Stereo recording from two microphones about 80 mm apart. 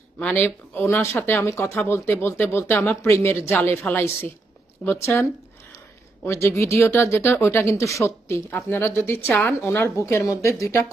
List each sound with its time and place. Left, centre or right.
0.3 s speech: left
6.2 s speech: left
9.9 s speech: left